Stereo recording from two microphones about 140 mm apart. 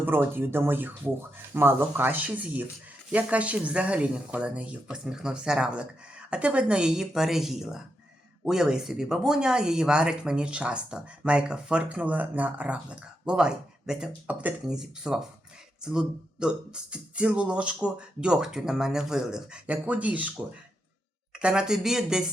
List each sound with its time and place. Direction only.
0.0 s speech: 15° right (ahead or behind)
21.3 s speech: 5° right (ahead or behind)